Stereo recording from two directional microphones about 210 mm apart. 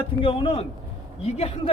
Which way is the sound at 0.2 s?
25° left (ahead or behind).